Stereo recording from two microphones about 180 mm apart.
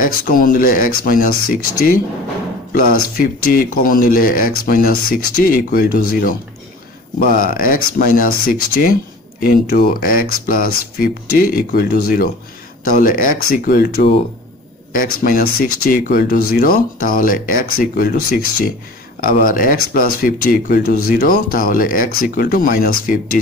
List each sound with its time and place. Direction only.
0.0 s speech: 50° left (ahead or behind)
2.7 s speech: 55° left (ahead or behind)